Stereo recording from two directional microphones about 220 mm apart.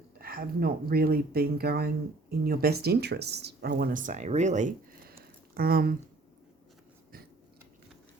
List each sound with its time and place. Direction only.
0.2 s speech: 40° right (ahead or behind)